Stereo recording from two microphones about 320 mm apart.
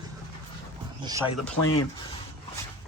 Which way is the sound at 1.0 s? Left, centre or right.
Centre.